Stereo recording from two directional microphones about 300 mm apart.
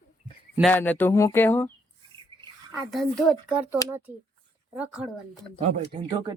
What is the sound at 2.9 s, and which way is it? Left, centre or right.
A child's voice, centre.